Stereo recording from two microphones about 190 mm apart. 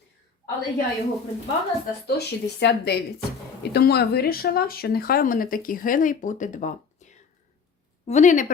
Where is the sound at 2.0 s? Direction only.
60° left (ahead or behind).